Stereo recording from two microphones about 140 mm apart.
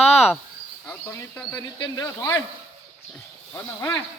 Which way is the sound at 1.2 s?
15° left (ahead or behind).